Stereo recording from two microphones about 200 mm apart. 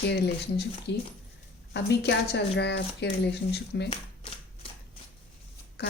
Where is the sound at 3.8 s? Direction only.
25° left (ahead or behind).